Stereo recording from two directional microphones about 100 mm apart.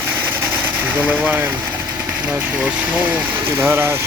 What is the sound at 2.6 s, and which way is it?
Speech, 10° right (ahead or behind).